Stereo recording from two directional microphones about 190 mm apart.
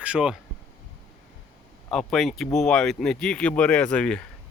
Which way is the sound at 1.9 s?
Centre (ahead or behind).